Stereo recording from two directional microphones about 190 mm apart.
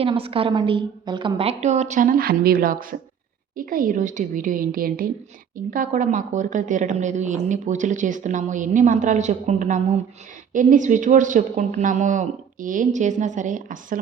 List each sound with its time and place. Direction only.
0.0 s a woman's voice: 30° right (ahead or behind)